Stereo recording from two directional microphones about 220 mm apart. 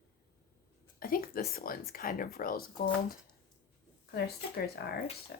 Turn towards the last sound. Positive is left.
turn(degrees=45)  # may be behind; listen again after turning